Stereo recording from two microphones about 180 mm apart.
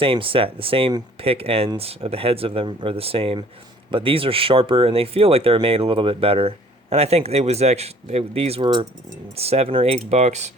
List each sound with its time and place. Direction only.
0.0 s speech: 30° right (ahead or behind)